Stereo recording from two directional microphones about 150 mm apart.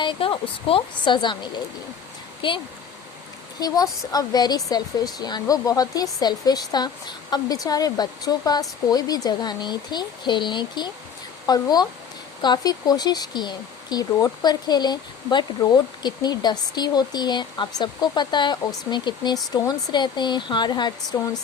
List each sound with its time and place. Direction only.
0.0 s speech: 35° left (ahead or behind)
3.6 s speech: 25° left (ahead or behind)